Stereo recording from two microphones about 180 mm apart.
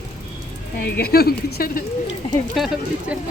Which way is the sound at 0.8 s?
60° left (ahead or behind).